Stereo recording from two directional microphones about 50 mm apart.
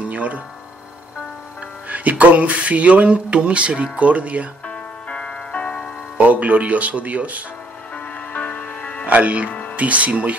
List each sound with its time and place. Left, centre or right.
0.0 s a sound: right
1.9 s speech: right
4.6 s music: left
6.1 s speech: right
7.9 s music: left
9.0 s speech: right
9.5 s music: left
9.8 s speech: right